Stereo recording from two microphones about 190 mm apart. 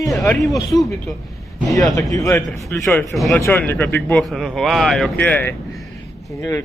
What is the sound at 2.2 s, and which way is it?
A man's voice, 15° left (ahead or behind).